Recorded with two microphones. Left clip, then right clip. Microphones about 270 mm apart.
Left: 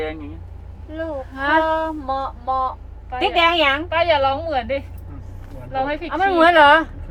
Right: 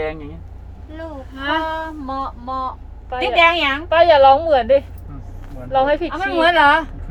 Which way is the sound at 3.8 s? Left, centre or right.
Right.